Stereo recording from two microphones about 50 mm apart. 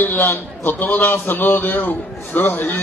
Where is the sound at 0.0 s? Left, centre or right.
Left.